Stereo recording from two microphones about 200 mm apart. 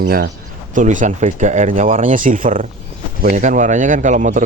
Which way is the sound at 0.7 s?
40° right (ahead or behind).